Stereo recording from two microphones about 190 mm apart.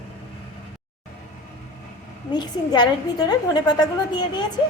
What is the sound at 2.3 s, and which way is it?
A woman's voice, 20° left (ahead or behind).